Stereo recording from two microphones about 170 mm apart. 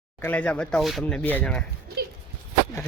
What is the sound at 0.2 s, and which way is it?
Speech, 10° left (ahead or behind).